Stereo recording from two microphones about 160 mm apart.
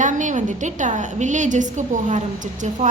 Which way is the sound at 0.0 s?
50° right (ahead or behind).